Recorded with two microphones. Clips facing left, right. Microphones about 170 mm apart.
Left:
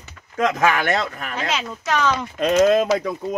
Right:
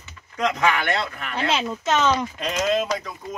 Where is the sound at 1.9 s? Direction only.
20° right (ahead or behind).